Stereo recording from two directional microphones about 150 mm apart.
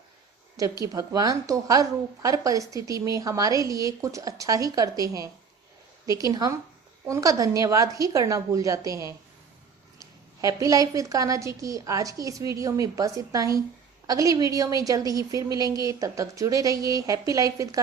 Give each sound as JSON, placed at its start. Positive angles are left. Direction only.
{"t": 0.6, "sound": "a woman's voice", "side_deg": -25}